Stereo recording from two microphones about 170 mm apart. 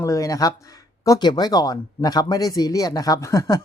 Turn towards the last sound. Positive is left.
turn(degrees=20)  # may be behind; listen again after turning